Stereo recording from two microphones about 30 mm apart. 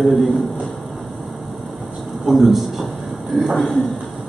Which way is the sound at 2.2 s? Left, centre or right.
Centre.